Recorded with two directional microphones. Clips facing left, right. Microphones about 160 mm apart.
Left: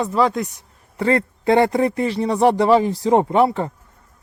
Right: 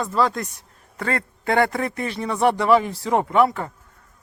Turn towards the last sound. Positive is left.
turn(degrees=25)  # may be behind; listen again after turning